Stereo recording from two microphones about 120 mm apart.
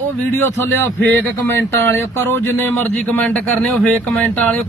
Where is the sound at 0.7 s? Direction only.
15° left (ahead or behind).